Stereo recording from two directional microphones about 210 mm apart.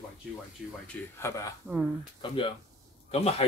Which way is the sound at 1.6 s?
5° right (ahead or behind).